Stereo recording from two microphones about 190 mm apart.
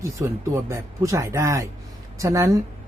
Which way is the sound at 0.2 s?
15° right (ahead or behind).